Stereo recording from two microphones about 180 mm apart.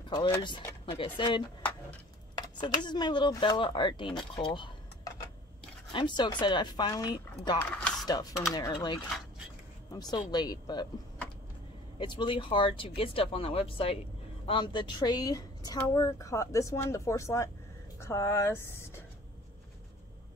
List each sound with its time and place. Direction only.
0.1 s speech: 25° left (ahead or behind)
4.4 s a sound: 25° left (ahead or behind)
5.9 s speech: 25° left (ahead or behind)
12.0 s a woman's voice: 25° left (ahead or behind)